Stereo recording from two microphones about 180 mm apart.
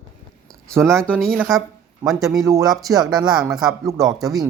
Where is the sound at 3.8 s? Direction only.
20° right (ahead or behind).